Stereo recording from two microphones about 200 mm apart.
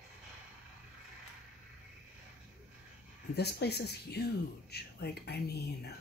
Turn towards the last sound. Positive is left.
turn(degrees=55)  # may be behind; listen again after turning